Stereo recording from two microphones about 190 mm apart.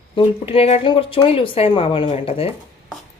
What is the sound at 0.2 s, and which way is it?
Speech, 30° left (ahead or behind).